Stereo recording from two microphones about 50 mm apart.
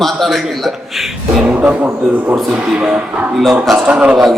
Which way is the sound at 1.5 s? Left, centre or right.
Right.